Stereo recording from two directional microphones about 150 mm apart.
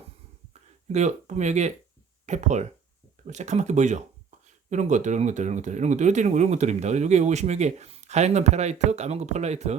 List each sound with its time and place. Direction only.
0.9 s speech: 50° right (ahead or behind)